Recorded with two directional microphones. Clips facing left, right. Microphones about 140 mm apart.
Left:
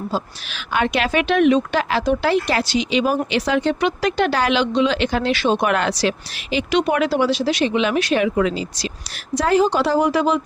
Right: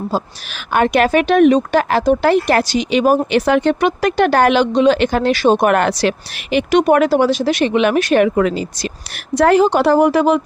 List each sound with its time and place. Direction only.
0.1 s speech: 45° right (ahead or behind)